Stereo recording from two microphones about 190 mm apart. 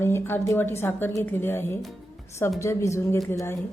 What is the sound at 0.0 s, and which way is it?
A woman's voice, 15° left (ahead or behind).